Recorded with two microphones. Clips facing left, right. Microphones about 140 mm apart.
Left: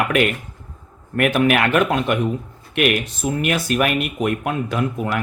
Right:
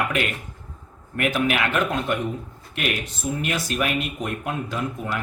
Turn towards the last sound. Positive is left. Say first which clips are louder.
# left 6 dB
turn(degrees=70)  # may be behind; listen again after turning